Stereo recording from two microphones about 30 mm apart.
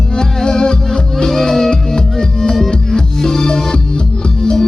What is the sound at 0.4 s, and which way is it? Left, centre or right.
Music, left.